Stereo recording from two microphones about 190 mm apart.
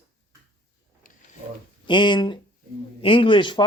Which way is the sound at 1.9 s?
25° left (ahead or behind).